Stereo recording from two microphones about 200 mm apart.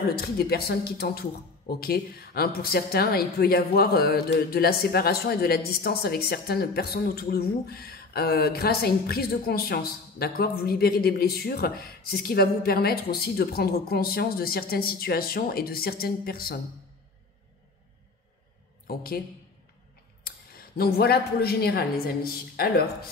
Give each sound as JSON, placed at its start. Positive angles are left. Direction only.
{"t": 0.1, "sound": "a woman's voice", "side_deg": 50}
{"t": 18.9, "sound": "a woman's voice", "side_deg": 50}
{"t": 20.2, "sound": "a woman's voice", "side_deg": 50}